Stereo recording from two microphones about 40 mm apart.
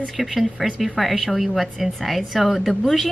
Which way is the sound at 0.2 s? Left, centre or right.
Centre.